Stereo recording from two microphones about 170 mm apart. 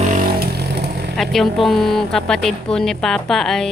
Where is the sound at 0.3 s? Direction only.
70° right (ahead or behind).